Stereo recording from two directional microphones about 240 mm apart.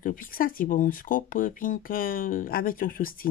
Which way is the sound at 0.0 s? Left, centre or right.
Left.